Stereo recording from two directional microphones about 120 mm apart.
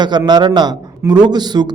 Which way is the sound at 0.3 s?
35° right (ahead or behind).